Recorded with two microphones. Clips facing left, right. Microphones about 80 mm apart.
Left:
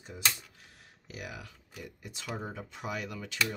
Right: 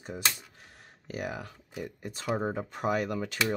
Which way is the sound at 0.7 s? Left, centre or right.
Right.